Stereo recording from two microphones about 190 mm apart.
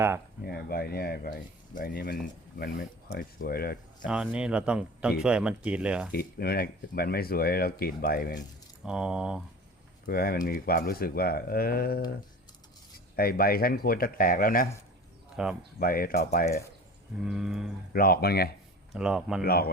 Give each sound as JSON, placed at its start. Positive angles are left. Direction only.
{"t": 0.4, "sound": "speech", "side_deg": 55}
{"t": 4.0, "sound": "speech", "side_deg": -5}
{"t": 6.1, "sound": "speech", "side_deg": 55}
{"t": 8.8, "sound": "speech", "side_deg": -5}
{"t": 10.1, "sound": "speech", "side_deg": 50}
{"t": 13.1, "sound": "speech", "side_deg": 50}
{"t": 15.4, "sound": "speech", "side_deg": -5}
{"t": 15.8, "sound": "speech", "side_deg": 50}
{"t": 17.2, "sound": "speech", "side_deg": 0}
{"t": 17.9, "sound": "speech", "side_deg": 50}
{"t": 18.9, "sound": "speech", "side_deg": -5}
{"t": 19.5, "sound": "speech", "side_deg": 55}